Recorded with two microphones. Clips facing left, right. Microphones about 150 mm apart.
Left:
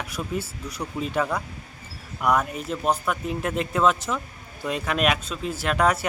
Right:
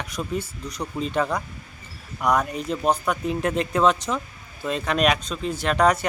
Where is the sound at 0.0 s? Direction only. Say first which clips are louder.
Right 1 dB; 5° left (ahead or behind).